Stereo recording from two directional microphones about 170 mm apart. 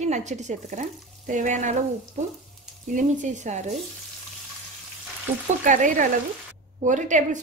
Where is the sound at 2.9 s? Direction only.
50° right (ahead or behind).